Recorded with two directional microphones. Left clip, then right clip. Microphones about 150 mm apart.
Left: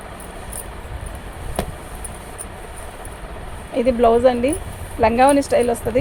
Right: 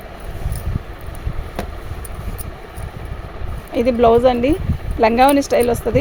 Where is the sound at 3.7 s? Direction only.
60° right (ahead or behind).